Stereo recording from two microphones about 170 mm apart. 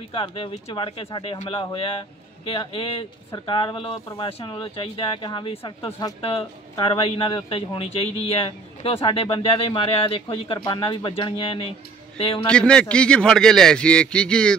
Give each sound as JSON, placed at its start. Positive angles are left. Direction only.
{"t": 0.1, "sound": "speech", "side_deg": 30}
{"t": 12.4, "sound": "a man's voice", "side_deg": 5}